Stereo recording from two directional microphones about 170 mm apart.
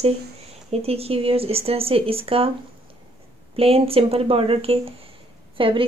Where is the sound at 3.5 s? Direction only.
35° right (ahead or behind).